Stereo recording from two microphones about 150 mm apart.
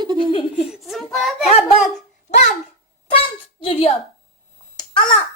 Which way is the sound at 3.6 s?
40° left (ahead or behind).